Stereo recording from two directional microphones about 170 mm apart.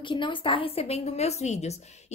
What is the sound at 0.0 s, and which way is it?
A woman's voice, 30° left (ahead or behind).